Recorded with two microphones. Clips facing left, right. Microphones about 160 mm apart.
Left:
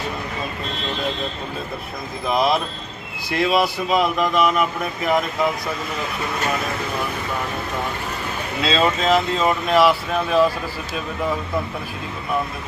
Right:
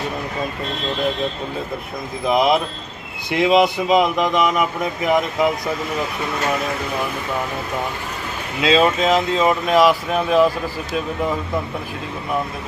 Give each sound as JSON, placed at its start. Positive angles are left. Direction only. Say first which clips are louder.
{"t": 2.2, "sound": "speech", "louder": "right 3 dB", "side_deg": -20}
{"t": 8.6, "sound": "speech", "louder": "right 4 dB", "side_deg": -10}